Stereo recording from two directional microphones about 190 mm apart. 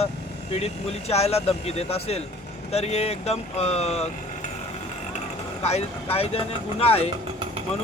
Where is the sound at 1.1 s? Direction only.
30° left (ahead or behind).